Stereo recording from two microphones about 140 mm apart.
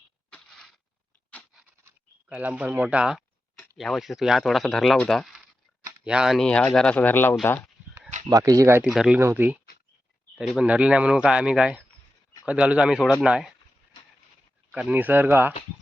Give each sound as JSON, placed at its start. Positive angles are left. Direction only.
{"t": 0.3, "sound": "a sound", "side_deg": 5}
{"t": 2.3, "sound": "speech", "side_deg": -10}
{"t": 8.3, "sound": "speech", "side_deg": -25}
{"t": 8.8, "sound": "speech", "side_deg": -5}
{"t": 14.7, "sound": "speech", "side_deg": -10}